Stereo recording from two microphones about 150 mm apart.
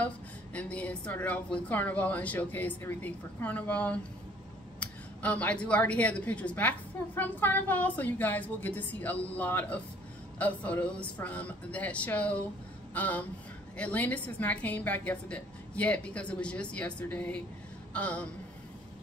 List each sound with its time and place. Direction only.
0.0 s a woman's voice: 10° left (ahead or behind)